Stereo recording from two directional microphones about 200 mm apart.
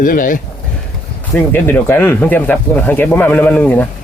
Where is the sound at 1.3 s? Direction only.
10° left (ahead or behind).